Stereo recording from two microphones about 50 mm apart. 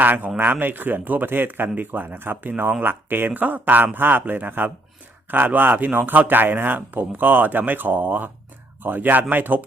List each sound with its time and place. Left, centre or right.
0.0 s speech: right